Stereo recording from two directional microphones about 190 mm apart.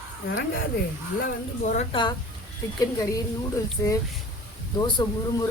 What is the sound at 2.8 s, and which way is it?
Speech, 20° left (ahead or behind).